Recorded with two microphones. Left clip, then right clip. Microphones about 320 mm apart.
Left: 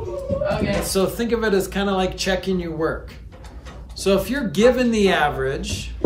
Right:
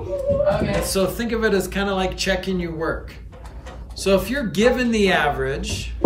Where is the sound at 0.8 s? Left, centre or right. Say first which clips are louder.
Left 1 dB; centre.